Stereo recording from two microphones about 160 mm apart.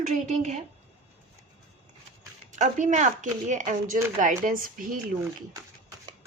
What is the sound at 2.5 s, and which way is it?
Speech, 50° right (ahead or behind).